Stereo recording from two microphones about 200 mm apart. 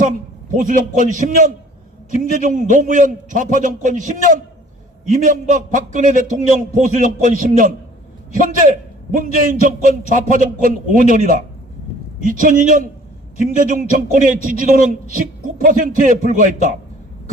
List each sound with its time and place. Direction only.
0.5 s a man's voice: 40° right (ahead or behind)